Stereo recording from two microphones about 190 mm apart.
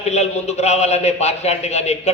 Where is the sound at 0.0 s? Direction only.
35° left (ahead or behind).